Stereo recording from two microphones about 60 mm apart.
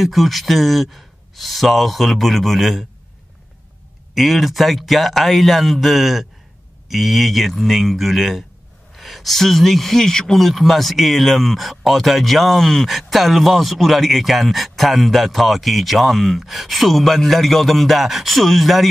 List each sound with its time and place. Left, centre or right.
0.0 s speech: centre
4.1 s speech: centre